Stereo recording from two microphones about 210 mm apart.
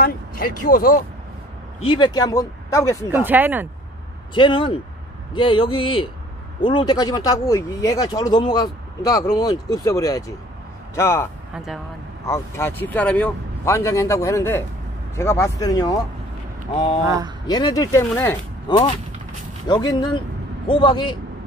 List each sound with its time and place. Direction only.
0.0 s speech: 45° left (ahead or behind)
1.9 s speech: 20° left (ahead or behind)
3.1 s speech: 10° right (ahead or behind)
4.3 s speech: 25° left (ahead or behind)
11.5 s speech: centre (ahead or behind)
12.3 s speech: 10° left (ahead or behind)
17.0 s speech: 15° right (ahead or behind)
17.5 s speech: 20° left (ahead or behind)